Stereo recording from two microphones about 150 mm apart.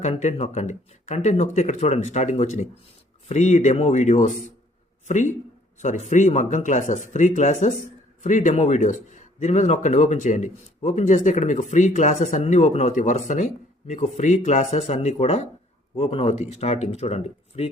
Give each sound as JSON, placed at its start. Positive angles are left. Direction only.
{"t": 0.0, "sound": "speech", "side_deg": 50}